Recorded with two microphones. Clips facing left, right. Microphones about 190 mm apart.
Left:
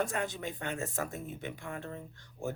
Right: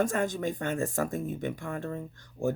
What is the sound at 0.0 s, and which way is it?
Speech, 45° right (ahead or behind).